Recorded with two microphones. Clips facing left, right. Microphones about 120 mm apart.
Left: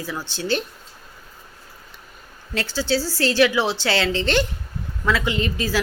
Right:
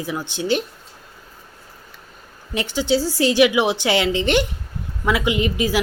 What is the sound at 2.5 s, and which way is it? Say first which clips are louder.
A woman's voice: right 3 dB; 15° right (ahead or behind).